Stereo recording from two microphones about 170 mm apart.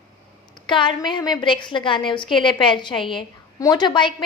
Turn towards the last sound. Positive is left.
turn(degrees=25)  # may be behind; listen again after turning